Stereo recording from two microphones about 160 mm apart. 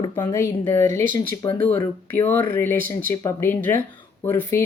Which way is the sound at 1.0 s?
55° right (ahead or behind).